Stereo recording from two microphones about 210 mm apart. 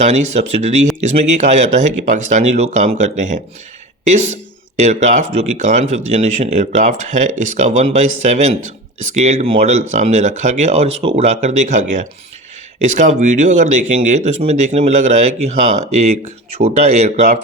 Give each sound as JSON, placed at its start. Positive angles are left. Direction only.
{"t": 0.0, "sound": "speech", "side_deg": -30}
{"t": 4.8, "sound": "speech", "side_deg": -35}